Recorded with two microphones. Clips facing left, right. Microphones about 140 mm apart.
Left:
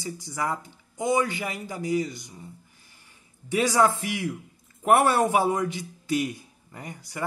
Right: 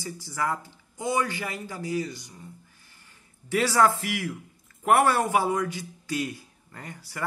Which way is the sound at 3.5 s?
20° left (ahead or behind).